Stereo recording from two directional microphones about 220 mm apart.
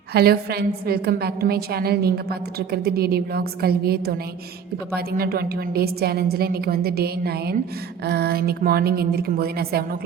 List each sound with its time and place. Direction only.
0.1 s a woman's voice: 45° right (ahead or behind)